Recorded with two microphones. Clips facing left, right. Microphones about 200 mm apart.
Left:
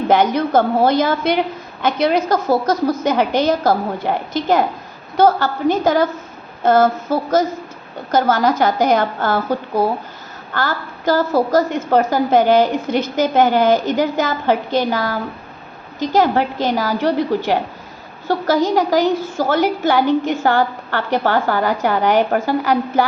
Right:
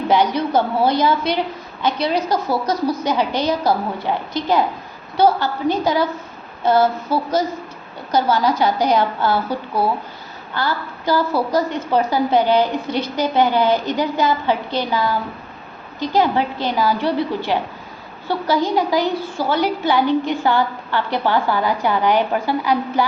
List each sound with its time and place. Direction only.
0.1 s a woman's voice: 50° left (ahead or behind)
5.1 s a woman's voice: 45° left (ahead or behind)